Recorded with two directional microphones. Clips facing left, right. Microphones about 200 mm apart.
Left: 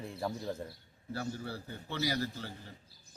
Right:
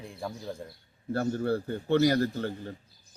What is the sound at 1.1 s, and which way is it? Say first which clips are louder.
A man's voice: right 11 dB; 55° right (ahead or behind).